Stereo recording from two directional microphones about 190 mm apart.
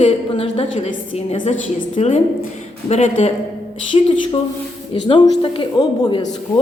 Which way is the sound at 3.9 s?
25° left (ahead or behind).